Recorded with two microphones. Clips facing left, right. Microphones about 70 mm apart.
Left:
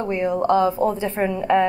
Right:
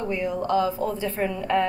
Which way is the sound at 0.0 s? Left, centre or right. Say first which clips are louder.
Left 5 dB; left.